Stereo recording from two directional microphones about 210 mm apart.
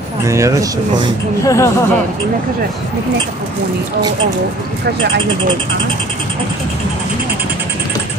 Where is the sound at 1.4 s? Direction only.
15° left (ahead or behind).